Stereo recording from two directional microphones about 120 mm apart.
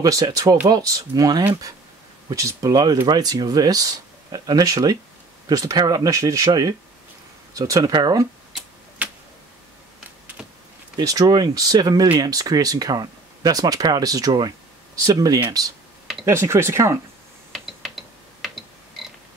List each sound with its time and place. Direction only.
0.0 s speech: 30° right (ahead or behind)
11.0 s speech: 30° right (ahead or behind)
17.5 s typing: centre (ahead or behind)